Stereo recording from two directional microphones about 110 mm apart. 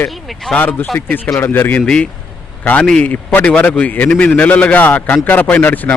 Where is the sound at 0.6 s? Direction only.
15° left (ahead or behind).